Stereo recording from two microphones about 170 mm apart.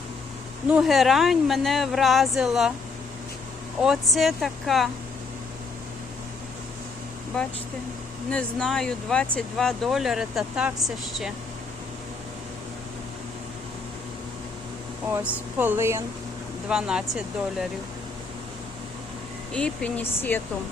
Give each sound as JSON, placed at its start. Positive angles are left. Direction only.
{"t": 0.7, "sound": "speech", "side_deg": 0}
{"t": 3.8, "sound": "speech", "side_deg": 0}
{"t": 8.3, "sound": "speech", "side_deg": 5}
{"t": 15.1, "sound": "speech", "side_deg": -10}
{"t": 16.6, "sound": "speech", "side_deg": -5}
{"t": 19.5, "sound": "speech", "side_deg": 5}